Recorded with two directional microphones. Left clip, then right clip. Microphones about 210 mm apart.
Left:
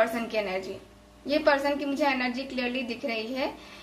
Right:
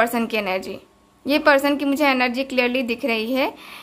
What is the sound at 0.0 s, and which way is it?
A woman's voice, 45° right (ahead or behind).